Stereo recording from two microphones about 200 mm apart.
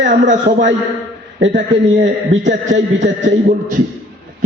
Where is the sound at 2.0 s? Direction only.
35° right (ahead or behind).